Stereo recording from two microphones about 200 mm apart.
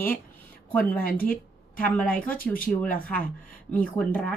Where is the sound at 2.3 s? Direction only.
45° left (ahead or behind).